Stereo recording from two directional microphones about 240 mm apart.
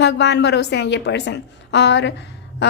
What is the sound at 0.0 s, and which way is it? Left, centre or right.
A woman's voice, left.